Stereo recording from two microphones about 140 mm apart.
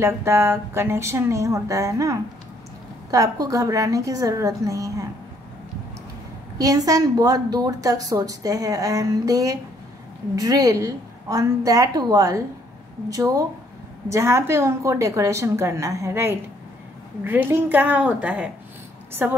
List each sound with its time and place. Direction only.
0.0 s a woman's voice: 20° right (ahead or behind)
6.6 s a woman's voice: 25° right (ahead or behind)